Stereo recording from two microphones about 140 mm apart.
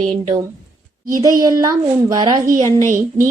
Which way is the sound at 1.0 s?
25° right (ahead or behind).